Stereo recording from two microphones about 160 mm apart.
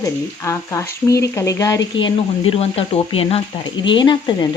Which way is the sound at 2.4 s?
35° left (ahead or behind).